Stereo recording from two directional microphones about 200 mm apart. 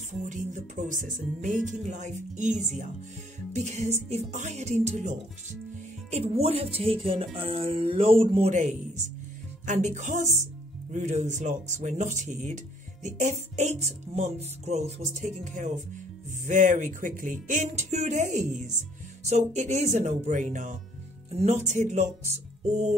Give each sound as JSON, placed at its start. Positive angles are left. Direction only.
{"t": 0.2, "sound": "music", "side_deg": -40}
{"t": 6.1, "sound": "speech", "side_deg": -30}
{"t": 9.7, "sound": "music", "side_deg": -40}